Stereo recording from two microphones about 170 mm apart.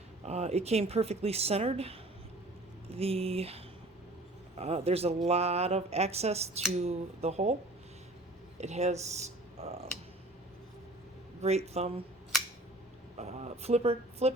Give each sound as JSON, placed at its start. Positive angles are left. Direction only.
{"t": 0.3, "sound": "speech", "side_deg": -40}
{"t": 8.6, "sound": "speech", "side_deg": -40}
{"t": 11.4, "sound": "speech", "side_deg": -40}
{"t": 13.1, "sound": "a sound", "side_deg": -40}